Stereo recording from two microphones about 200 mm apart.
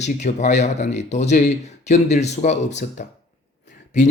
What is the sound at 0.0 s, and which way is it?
Speech, 35° left (ahead or behind).